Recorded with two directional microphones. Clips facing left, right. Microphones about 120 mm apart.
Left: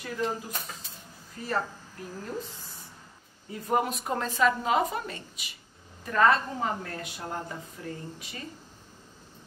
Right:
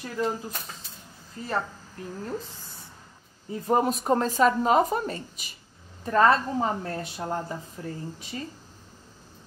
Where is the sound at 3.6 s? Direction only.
35° right (ahead or behind).